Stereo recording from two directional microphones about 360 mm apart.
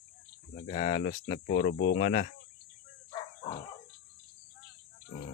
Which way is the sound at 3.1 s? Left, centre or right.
Centre.